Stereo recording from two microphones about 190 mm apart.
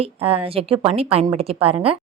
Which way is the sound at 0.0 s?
30° right (ahead or behind).